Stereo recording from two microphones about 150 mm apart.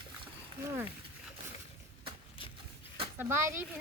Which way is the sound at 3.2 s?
15° right (ahead or behind).